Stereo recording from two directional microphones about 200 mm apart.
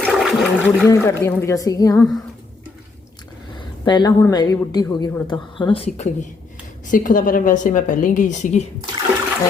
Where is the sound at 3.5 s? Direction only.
20° left (ahead or behind); by 8.6 s 40° left (ahead or behind).